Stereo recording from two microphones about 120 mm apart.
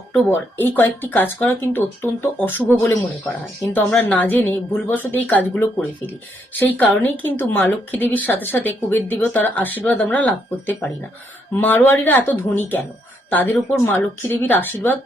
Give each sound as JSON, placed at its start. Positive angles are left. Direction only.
{"t": 0.3, "sound": "a woman's voice", "side_deg": 15}
{"t": 2.6, "sound": "speech", "side_deg": -15}
{"t": 3.2, "sound": "a woman's voice", "side_deg": 20}